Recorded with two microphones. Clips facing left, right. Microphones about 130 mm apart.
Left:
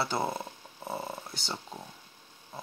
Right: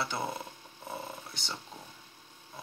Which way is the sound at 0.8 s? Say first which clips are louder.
Left 4 dB; 35° left (ahead or behind).